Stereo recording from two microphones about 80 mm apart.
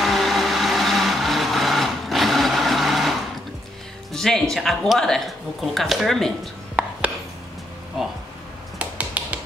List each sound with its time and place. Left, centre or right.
0.0 s vehicle: centre
4.1 s speech: centre
6.8 s a sound: centre
8.7 s finger snapping: centre